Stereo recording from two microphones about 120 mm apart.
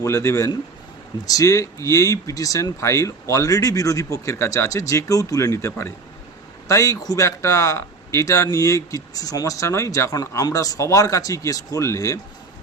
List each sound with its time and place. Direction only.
0.0 s speech: 25° left (ahead or behind)